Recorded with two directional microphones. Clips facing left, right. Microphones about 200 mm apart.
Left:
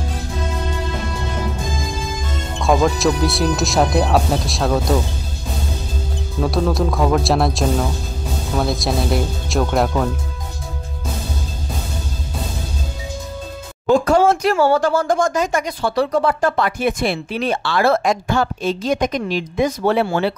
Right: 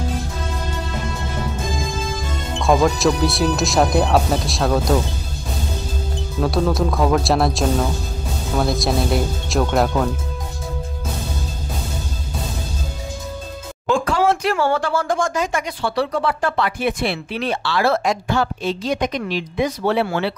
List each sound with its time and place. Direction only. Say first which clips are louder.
2.6 s speech: even; centre (ahead or behind)
6.4 s speech: even; centre (ahead or behind)
13.8 s a sound: left 4 dB; 40° left (ahead or behind)
14.7 s speech: left 4 dB; 40° left (ahead or behind)